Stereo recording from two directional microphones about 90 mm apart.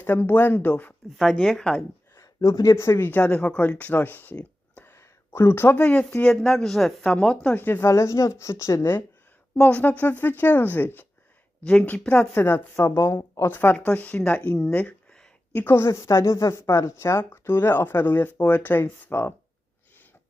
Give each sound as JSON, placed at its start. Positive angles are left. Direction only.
{"t": 0.0, "sound": "speech", "side_deg": 20}
{"t": 1.1, "sound": "speech", "side_deg": 0}
{"t": 2.1, "sound": "speech", "side_deg": 35}
{"t": 6.4, "sound": "speech", "side_deg": 5}
{"t": 7.6, "sound": "speech", "side_deg": 25}
{"t": 9.6, "sound": "speech", "side_deg": 15}
{"t": 12.3, "sound": "speech", "side_deg": 25}